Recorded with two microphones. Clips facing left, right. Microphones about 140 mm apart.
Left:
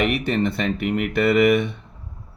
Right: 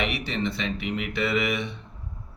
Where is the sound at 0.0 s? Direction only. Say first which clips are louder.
Left 7 dB; 50° left (ahead or behind).